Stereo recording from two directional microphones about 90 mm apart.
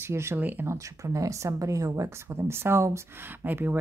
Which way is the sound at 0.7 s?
35° right (ahead or behind).